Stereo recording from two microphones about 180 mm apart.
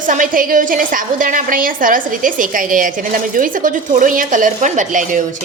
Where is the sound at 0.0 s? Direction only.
45° right (ahead or behind).